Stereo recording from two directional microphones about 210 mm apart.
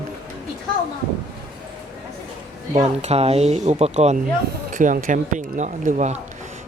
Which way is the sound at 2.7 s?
30° right (ahead or behind).